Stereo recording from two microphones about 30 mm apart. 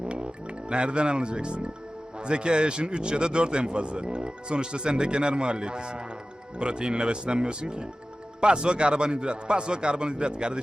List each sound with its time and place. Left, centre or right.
0.0 s music: right
0.7 s speech: right